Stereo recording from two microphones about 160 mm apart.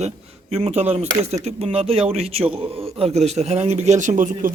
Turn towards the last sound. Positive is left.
turn(degrees=-50)  # may be behind; listen again after turning